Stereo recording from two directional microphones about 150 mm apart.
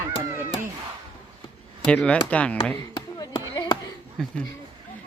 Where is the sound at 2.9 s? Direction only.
25° left (ahead or behind).